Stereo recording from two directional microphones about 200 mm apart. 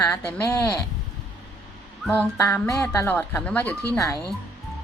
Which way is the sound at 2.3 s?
15° left (ahead or behind).